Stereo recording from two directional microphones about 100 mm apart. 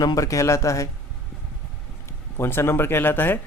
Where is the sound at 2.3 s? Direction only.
25° left (ahead or behind).